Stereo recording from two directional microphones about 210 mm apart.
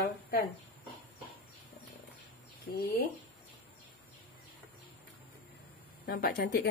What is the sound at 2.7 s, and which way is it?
Speech, 50° left (ahead or behind).